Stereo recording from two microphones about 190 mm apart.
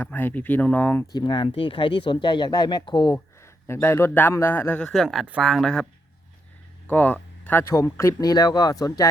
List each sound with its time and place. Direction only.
0.0 s speech: 10° left (ahead or behind)
1.1 s speech: 25° left (ahead or behind); by 5.8 s 5° left (ahead or behind)
6.8 s speech: 10° left (ahead or behind)